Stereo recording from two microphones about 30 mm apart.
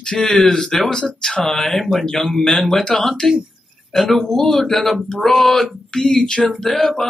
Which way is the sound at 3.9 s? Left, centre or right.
Centre.